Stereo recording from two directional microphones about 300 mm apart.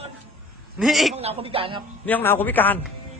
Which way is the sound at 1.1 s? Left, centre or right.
Centre.